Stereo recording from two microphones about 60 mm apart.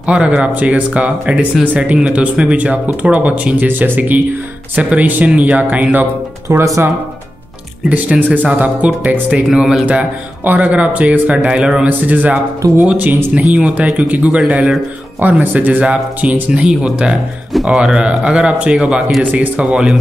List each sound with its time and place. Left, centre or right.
0.0 s speech: centre
3.6 s speech: right
6.5 s speech: right
7.9 s speech: right
9.5 s speech: centre
9.8 s speech: right
12.1 s speech: right
16.4 s speech: centre